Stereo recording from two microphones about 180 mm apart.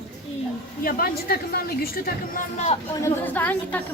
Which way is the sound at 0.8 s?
55° left (ahead or behind).